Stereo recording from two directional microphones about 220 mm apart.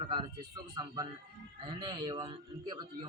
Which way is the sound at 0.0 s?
20° right (ahead or behind).